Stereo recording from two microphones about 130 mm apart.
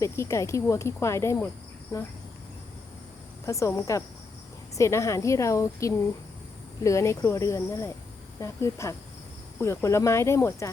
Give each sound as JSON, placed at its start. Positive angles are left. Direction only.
{"t": 0.0, "sound": "speech", "side_deg": 25}
{"t": 3.4, "sound": "speech", "side_deg": 25}